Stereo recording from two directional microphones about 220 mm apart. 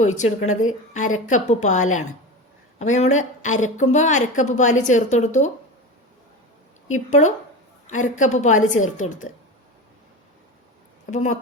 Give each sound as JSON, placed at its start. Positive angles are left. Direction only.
{"t": 0.0, "sound": "a woman's voice", "side_deg": 30}
{"t": 6.9, "sound": "a woman's voice", "side_deg": 35}
{"t": 11.1, "sound": "a woman's voice", "side_deg": 35}